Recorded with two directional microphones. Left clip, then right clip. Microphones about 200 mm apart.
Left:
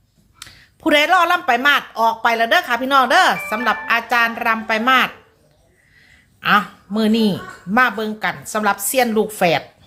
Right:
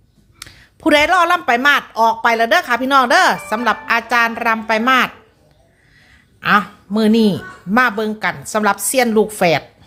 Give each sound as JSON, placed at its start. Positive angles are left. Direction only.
{"t": 0.3, "sound": "speech", "side_deg": -20}
{"t": 6.4, "sound": "speech", "side_deg": -20}